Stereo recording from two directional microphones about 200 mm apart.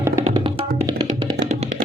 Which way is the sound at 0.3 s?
25° right (ahead or behind).